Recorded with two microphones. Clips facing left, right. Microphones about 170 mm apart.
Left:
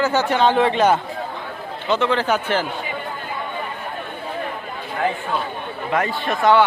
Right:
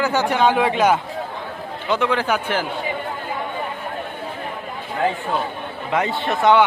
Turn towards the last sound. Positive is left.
turn(degrees=-20)  # may be behind; listen again after turning